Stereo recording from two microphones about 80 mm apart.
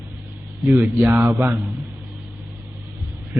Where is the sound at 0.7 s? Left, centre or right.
Right.